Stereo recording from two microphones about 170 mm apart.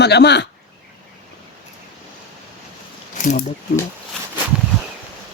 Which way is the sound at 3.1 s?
50° left (ahead or behind).